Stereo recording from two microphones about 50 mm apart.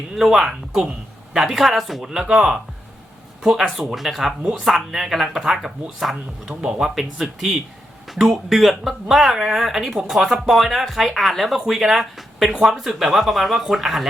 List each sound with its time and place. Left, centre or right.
0.1 s speech: centre
6.4 s speech: centre
6.9 s speech: centre